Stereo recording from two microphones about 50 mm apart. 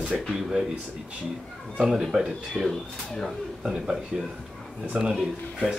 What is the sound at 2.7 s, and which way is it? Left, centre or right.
Speech, centre.